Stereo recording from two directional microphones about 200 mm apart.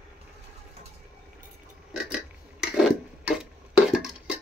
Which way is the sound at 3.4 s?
5° right (ahead or behind).